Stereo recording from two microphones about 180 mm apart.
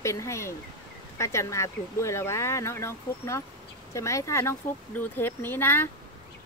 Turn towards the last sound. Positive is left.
turn(degrees=10)  # may be behind; listen again after turning